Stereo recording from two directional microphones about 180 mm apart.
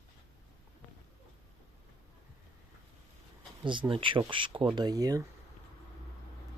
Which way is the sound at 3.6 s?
30° right (ahead or behind).